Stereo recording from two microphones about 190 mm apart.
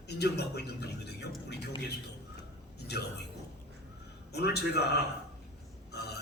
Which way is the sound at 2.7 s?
60° left (ahead or behind).